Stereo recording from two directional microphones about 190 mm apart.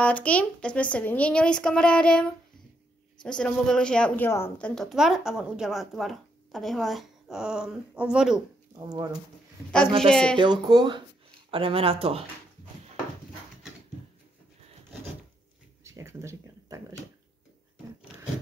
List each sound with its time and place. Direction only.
0.0 s speech: 5° left (ahead or behind)
8.7 s speech: 20° right (ahead or behind)
9.9 s speech: 5° left (ahead or behind)
10.3 s speech: 25° right (ahead or behind)
15.8 s a sound: 15° right (ahead or behind)